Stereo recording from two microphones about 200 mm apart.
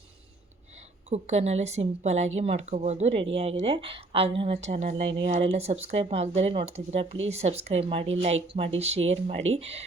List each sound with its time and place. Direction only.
1.1 s a woman's voice: 35° right (ahead or behind)